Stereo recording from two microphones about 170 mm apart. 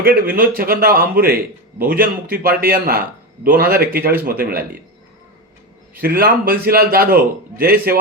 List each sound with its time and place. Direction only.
0.0 s a man's voice: 60° right (ahead or behind)
5.9 s a man's voice: 60° right (ahead or behind)